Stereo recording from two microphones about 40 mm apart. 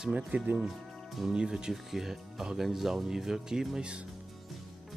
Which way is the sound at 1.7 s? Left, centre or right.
Centre.